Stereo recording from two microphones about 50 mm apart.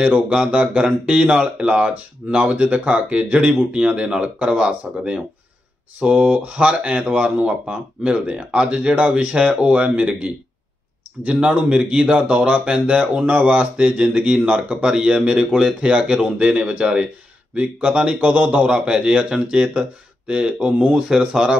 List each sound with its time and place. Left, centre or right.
0.5 s speech: right
18.7 s speech: centre